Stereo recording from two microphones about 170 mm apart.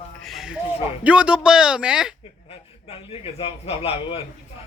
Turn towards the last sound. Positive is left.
turn(degrees=35)  # may be behind; listen again after turning